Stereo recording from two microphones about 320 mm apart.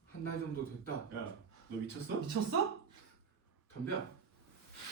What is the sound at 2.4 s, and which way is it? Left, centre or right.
Speech, right.